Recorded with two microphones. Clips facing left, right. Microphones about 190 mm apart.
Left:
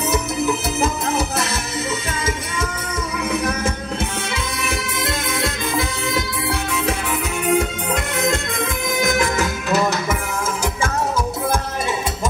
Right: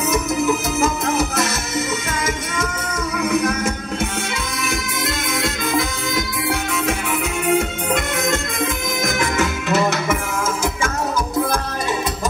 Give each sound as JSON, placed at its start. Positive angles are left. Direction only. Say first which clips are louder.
{"t": 0.7, "sound": "music", "louder": "right 2 dB", "side_deg": 30}
{"t": 3.3, "sound": "music", "louder": "right 3 dB", "side_deg": 30}
{"t": 7.5, "sound": "music", "louder": "even", "side_deg": 35}